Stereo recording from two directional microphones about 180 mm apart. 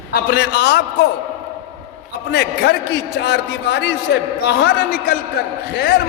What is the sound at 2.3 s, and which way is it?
A man's voice, 65° left (ahead or behind).